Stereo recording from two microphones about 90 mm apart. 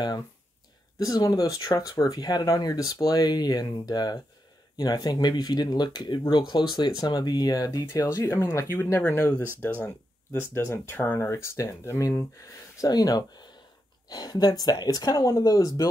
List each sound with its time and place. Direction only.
0.9 s speech: 40° left (ahead or behind)
8.2 s speech: 30° left (ahead or behind)